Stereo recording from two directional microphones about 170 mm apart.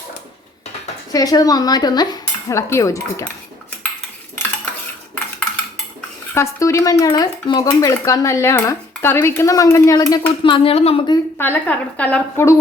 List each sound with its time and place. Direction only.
1.1 s cutlery: 20° left (ahead or behind)
6.3 s speech: 15° left (ahead or behind)
10.4 s a woman's voice: 30° left (ahead or behind)
11.3 s speech: 10° left (ahead or behind)